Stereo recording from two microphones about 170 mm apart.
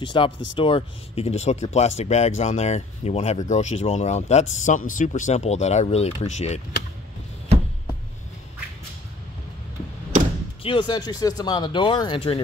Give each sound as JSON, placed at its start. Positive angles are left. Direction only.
{"t": 0.0, "sound": "speech", "side_deg": 30}
{"t": 10.6, "sound": "speech", "side_deg": 30}